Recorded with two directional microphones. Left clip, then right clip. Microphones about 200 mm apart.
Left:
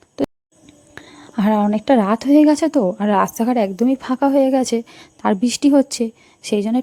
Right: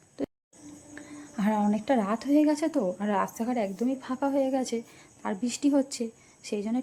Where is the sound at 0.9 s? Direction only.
40° left (ahead or behind).